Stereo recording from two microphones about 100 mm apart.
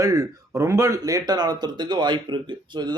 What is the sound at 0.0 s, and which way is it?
Speech, 35° right (ahead or behind).